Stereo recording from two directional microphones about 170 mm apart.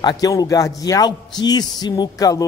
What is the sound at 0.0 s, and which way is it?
A man's voice, 20° left (ahead or behind).